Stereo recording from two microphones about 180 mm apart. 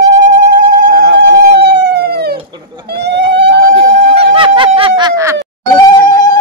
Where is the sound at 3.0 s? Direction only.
70° right (ahead or behind).